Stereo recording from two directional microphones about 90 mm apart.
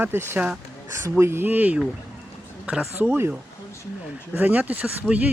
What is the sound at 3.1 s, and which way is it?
Speech, 20° right (ahead or behind).